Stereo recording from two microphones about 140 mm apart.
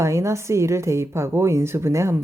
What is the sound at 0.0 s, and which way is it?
Speech, 20° right (ahead or behind).